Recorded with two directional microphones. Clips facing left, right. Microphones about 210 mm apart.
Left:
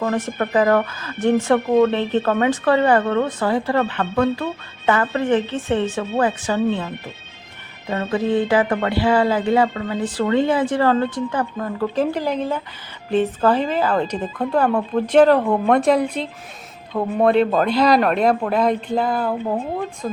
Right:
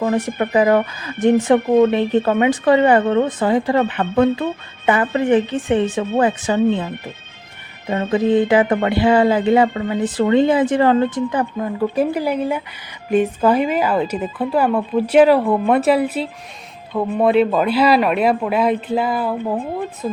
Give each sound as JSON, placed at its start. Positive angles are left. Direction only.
{"t": 0.0, "sound": "speech", "side_deg": -10}
{"t": 8.1, "sound": "speech", "side_deg": -20}